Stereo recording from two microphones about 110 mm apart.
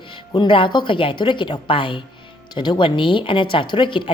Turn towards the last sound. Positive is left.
turn(degrees=50)  # may be behind; listen again after turning